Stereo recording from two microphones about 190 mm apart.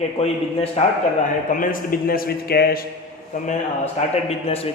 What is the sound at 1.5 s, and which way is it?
Speech, 45° left (ahead or behind).